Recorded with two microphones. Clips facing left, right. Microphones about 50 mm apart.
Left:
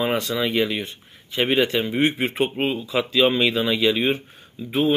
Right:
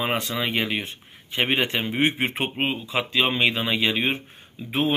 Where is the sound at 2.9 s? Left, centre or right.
Centre.